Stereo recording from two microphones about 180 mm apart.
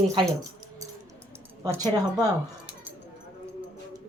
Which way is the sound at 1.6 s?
20° right (ahead or behind).